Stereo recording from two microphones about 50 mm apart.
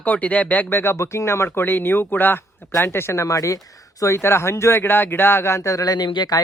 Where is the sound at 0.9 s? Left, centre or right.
Left.